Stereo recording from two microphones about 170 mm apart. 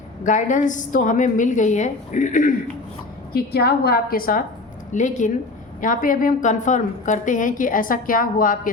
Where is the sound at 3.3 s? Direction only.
65° left (ahead or behind).